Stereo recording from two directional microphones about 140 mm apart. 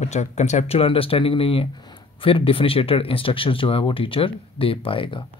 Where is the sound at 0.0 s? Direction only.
55° left (ahead or behind).